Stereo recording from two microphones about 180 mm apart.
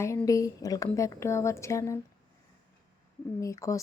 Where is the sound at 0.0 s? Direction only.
15° left (ahead or behind).